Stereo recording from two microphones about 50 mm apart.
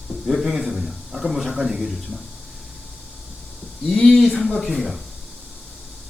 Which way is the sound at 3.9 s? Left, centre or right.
Centre.